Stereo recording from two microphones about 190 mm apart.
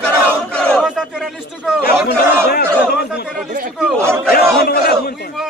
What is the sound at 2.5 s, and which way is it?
Crowd, 55° left (ahead or behind).